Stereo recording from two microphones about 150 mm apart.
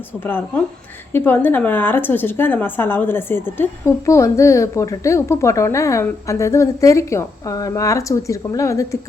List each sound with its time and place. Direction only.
0.2 s a woman's voice: 15° left (ahead or behind)